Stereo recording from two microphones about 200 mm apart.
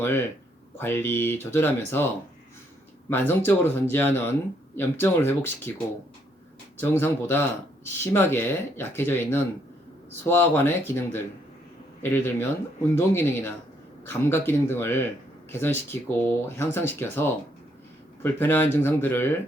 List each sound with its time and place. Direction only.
0.0 s speech: 10° left (ahead or behind)
3.1 s speech: 10° left (ahead or behind)
6.7 s speech: 10° left (ahead or behind)